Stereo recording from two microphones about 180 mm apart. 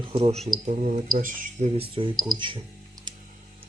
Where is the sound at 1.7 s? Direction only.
30° right (ahead or behind).